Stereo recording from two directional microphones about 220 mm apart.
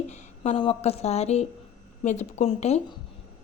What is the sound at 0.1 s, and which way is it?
A woman's voice, 25° left (ahead or behind).